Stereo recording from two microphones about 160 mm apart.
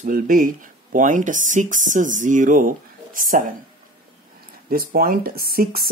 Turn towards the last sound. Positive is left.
turn(degrees=-70)  # may be behind; listen again after turning